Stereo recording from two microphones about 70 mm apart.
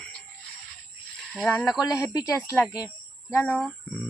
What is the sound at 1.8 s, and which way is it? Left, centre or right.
Speech, left.